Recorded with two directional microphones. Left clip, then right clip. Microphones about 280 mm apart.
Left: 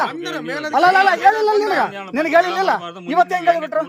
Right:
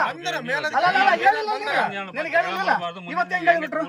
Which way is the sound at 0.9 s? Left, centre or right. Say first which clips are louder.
Left 5 dB; left.